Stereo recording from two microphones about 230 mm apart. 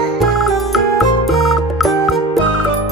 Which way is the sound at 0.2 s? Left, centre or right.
Centre.